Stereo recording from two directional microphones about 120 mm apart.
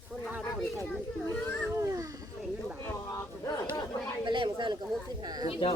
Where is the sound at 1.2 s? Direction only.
10° left (ahead or behind).